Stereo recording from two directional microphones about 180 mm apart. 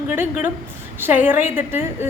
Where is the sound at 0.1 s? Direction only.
10° right (ahead or behind).